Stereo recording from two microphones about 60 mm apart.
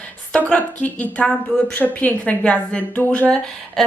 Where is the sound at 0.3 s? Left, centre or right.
Left.